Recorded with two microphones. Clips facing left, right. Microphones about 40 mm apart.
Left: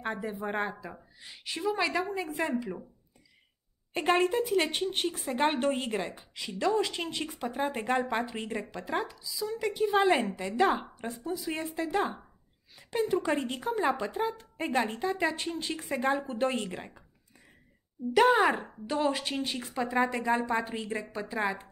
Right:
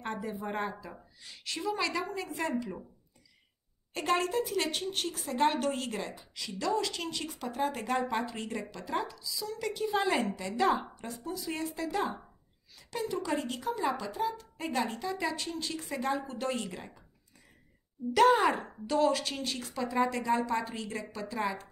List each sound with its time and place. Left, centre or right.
0.0 s a woman's voice: centre
3.9 s a woman's voice: left
10.6 s a woman's voice: centre
11.0 s speech: left
11.2 s speech: centre
18.1 s a woman's voice: centre